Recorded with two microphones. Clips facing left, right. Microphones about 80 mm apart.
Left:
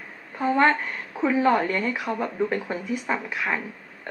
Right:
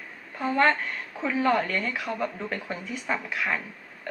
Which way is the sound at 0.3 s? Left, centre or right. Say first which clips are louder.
Left 3 dB; centre.